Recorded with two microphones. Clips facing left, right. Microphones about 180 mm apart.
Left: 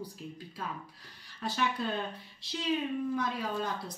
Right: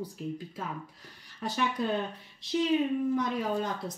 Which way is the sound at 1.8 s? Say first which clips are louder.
Right 4 dB; 15° right (ahead or behind).